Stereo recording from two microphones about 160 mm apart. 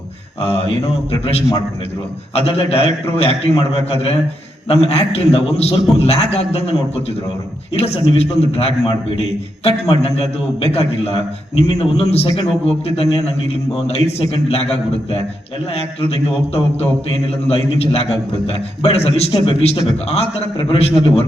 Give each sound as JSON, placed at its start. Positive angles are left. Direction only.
{"t": 0.4, "sound": "a man's voice", "side_deg": 40}
{"t": 17.5, "sound": "a man's voice", "side_deg": 40}